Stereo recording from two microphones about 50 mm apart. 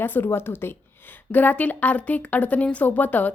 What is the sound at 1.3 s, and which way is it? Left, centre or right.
A woman's voice, left.